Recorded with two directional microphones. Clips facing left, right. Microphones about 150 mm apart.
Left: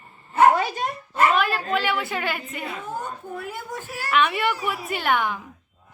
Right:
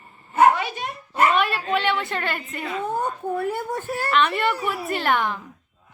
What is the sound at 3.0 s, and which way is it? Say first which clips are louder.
A woman's voice: right 8 dB; 55° right (ahead or behind).